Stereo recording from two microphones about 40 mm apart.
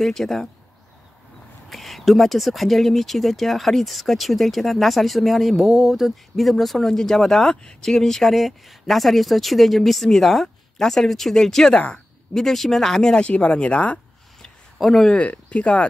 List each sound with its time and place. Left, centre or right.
0.0 s speech: centre
1.7 s speech: centre
13.2 s speech: left
14.8 s speech: centre
15.0 s speech: left